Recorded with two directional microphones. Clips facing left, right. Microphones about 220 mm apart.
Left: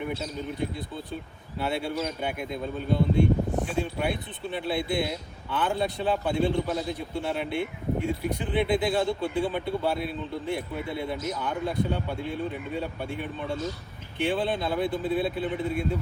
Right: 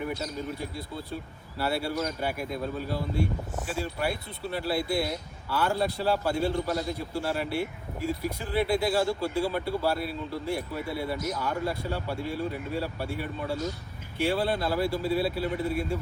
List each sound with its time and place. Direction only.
0.0 s speech: centre (ahead or behind)